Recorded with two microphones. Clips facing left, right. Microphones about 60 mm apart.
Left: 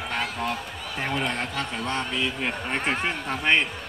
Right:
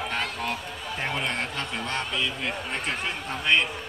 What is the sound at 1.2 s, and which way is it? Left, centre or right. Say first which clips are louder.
Speech: left 2 dB; left.